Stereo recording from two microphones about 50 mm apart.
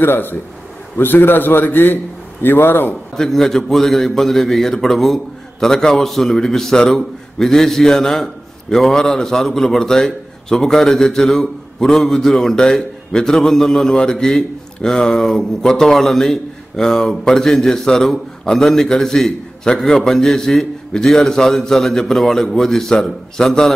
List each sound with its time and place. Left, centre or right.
0.0 s a man's voice: left
3.2 s a man's voice: centre